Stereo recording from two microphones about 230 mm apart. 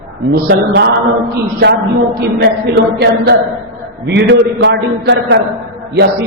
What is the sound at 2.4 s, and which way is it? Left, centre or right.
A man's voice, right.